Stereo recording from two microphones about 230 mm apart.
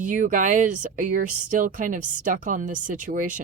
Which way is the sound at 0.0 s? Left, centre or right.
Right.